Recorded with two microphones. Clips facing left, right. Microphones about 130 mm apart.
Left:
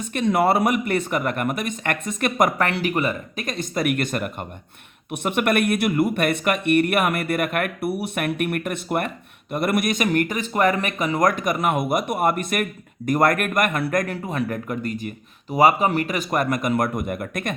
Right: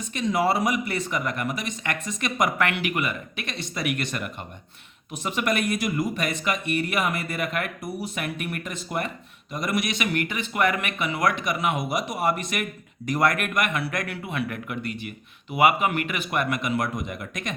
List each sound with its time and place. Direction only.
0.1 s speech: 55° left (ahead or behind)
2.6 s speech: 35° left (ahead or behind); by 17.5 s 55° left (ahead or behind)